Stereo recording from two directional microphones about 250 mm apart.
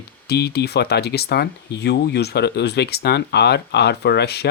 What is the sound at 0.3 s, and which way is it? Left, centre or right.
Speech, left.